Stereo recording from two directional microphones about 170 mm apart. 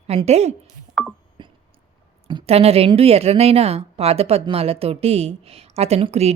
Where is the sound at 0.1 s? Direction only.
40° right (ahead or behind).